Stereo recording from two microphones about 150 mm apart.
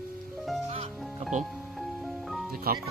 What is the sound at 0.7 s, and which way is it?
Music, 45° right (ahead or behind).